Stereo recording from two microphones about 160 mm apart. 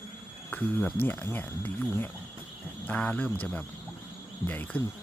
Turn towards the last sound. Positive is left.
turn(degrees=10)  # may be behind; listen again after turning